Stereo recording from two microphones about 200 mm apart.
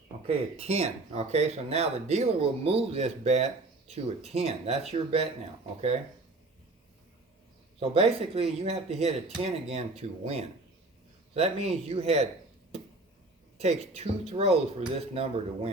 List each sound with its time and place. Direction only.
0.3 s speech: 30° right (ahead or behind)
7.8 s speech: 30° right (ahead or behind)
13.6 s speech: 30° right (ahead or behind)